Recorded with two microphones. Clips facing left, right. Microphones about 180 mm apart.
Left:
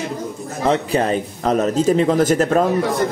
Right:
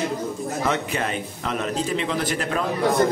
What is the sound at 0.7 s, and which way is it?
A man's voice, 35° left (ahead or behind).